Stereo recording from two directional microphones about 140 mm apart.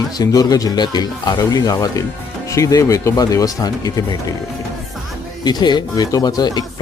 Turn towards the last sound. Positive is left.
turn(degrees=30)  # may be behind; listen again after turning